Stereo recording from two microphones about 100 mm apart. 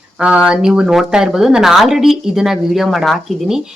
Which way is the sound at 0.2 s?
10° right (ahead or behind).